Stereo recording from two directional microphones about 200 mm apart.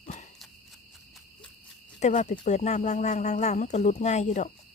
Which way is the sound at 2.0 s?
35° left (ahead or behind).